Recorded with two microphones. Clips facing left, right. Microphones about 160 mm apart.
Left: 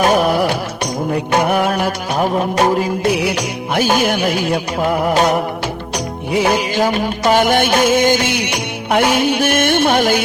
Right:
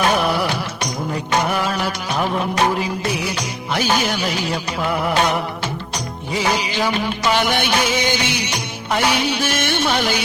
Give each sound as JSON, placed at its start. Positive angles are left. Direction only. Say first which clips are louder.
{"t": 0.0, "sound": "music of bollywood", "louder": "left 5 dB", "side_deg": 45}
{"t": 1.1, "sound": "music", "louder": "left 5 dB", "side_deg": 55}
{"t": 3.8, "sound": "music", "louder": "left 5 dB", "side_deg": 50}
{"t": 6.3, "sound": "music", "louder": "left 6 dB", "side_deg": 55}